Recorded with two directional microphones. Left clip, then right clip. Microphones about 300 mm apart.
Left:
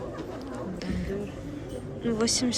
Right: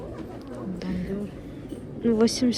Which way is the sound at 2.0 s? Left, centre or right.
Centre.